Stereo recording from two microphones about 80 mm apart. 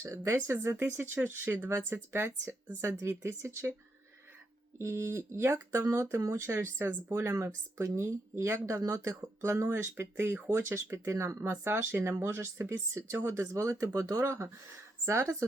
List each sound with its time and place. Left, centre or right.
0.0 s speech: right
4.8 s speech: right
12.1 s speech: right
12.4 s speech: right